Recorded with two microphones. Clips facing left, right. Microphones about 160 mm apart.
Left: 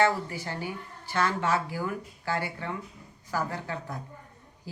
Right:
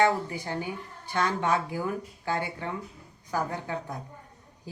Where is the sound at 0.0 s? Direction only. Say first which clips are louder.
Right 1 dB; 15° right (ahead or behind).